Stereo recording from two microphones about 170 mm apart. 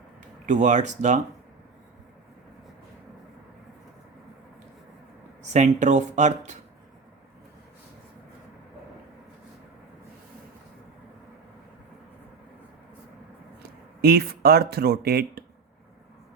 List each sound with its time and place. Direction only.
0.4 s speech: 45° right (ahead or behind)
5.4 s speech: 45° right (ahead or behind)
13.6 s speech: 65° right (ahead or behind)